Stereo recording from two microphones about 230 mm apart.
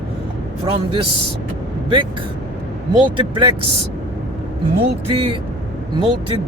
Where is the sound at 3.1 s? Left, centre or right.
Right.